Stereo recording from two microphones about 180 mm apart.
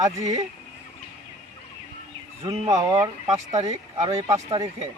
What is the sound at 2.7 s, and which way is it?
Speech, 20° right (ahead or behind).